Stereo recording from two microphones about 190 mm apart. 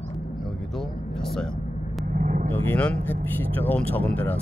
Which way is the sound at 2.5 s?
10° left (ahead or behind).